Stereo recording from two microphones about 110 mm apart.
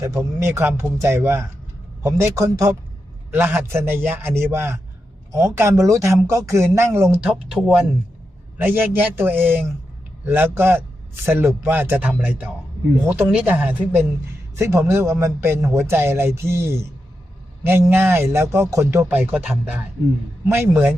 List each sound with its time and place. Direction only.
0.0 s a man's voice: 25° right (ahead or behind)
7.2 s speech: 10° right (ahead or behind)
8.5 s a man's voice: 20° right (ahead or behind)